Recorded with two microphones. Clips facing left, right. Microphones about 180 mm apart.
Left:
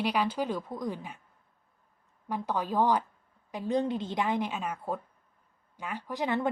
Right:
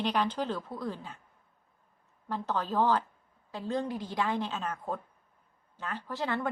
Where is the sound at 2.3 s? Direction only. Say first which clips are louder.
Left 1 dB; 10° left (ahead or behind).